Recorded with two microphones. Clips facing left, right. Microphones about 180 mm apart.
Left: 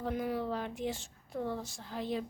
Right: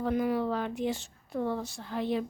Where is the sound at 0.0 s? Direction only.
85° right.